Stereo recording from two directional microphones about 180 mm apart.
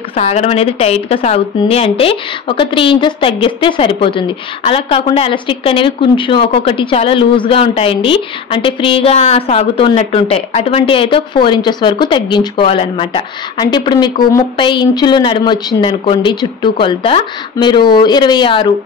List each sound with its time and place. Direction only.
0.1 s a woman's voice: 35° left (ahead or behind)